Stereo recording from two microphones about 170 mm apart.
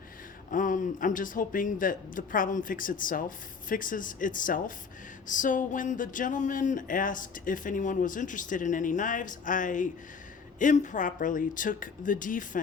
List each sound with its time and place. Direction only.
0.5 s speech: 50° left (ahead or behind)